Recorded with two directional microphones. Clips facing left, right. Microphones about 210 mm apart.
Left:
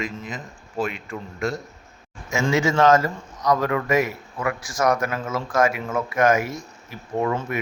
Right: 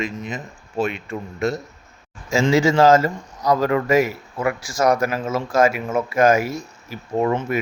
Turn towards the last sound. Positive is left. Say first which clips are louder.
# right 4 dB
turn(degrees=-25)  # may be behind; listen again after turning